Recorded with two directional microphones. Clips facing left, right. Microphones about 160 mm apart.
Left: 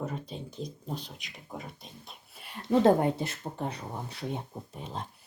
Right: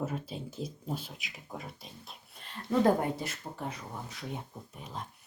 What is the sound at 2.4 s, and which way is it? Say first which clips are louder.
Speech: left 3 dB; 15° left (ahead or behind).